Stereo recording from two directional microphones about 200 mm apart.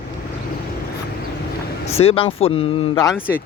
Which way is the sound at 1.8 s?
30° left (ahead or behind).